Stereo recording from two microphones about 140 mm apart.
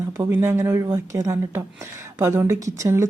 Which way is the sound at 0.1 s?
20° right (ahead or behind).